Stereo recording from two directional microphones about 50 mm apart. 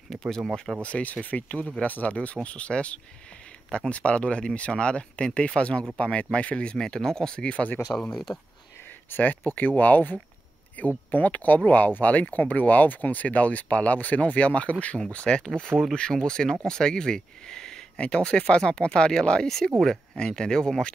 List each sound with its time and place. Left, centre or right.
0.1 s speech: centre
0.8 s speech: left
8.1 s speech: centre
8.8 s speech: left; by 20.9 s centre